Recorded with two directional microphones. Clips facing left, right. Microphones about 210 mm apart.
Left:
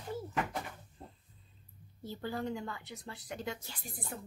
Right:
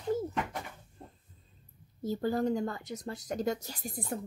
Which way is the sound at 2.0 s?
40° right (ahead or behind).